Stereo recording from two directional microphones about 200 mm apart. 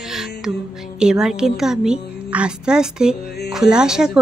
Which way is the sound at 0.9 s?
5° right (ahead or behind).